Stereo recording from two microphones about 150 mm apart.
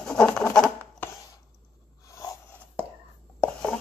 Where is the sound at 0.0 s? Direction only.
5° left (ahead or behind).